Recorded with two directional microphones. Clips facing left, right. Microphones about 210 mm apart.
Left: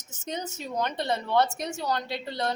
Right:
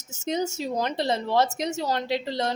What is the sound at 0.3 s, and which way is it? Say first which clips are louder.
A woman's voice: right 4 dB; 30° right (ahead or behind).